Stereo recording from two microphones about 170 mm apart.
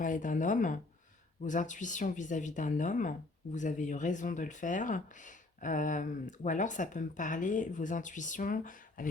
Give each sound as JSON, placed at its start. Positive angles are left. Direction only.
{"t": 0.0, "sound": "speech", "side_deg": 50}